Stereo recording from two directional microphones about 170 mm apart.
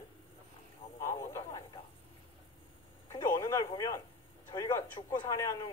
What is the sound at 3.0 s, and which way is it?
A man's voice, 20° left (ahead or behind).